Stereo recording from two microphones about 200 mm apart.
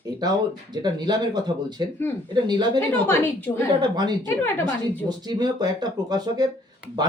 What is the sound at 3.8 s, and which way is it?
Speech, 20° right (ahead or behind).